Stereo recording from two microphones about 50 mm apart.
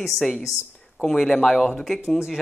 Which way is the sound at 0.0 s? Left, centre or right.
Centre.